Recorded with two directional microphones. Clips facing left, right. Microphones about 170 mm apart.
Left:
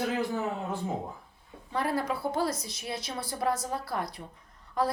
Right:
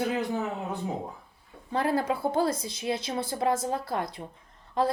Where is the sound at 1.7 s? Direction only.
25° right (ahead or behind).